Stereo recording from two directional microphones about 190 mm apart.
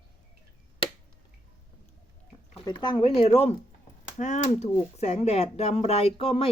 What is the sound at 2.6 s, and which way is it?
Speech, 25° left (ahead or behind).